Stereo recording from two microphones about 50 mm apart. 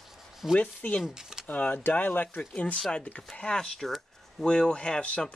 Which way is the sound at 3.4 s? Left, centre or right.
Centre.